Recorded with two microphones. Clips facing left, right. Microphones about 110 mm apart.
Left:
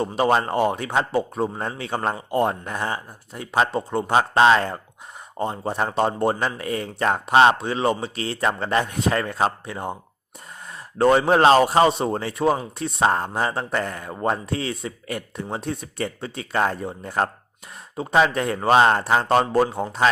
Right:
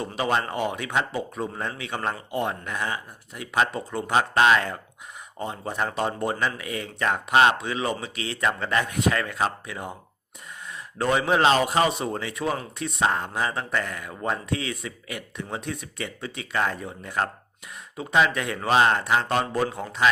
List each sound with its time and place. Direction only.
0.2 s a man's voice: 35° left (ahead or behind)